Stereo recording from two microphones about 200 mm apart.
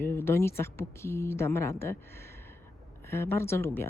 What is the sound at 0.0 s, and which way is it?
Speech, 10° left (ahead or behind).